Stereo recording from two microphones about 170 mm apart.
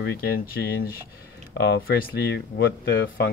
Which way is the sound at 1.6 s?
80° left.